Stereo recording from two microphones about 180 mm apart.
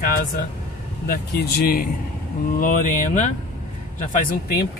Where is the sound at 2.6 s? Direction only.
45° left (ahead or behind).